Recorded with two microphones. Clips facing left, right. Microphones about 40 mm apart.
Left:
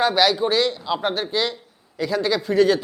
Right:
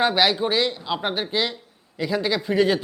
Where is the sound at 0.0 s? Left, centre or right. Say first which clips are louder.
Left 1 dB; centre.